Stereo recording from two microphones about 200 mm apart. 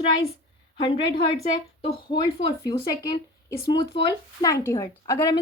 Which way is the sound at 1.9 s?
25° left (ahead or behind).